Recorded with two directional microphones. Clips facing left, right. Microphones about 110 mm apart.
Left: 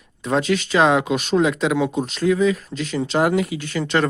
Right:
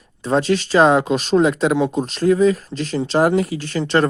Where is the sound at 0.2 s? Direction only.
35° right (ahead or behind).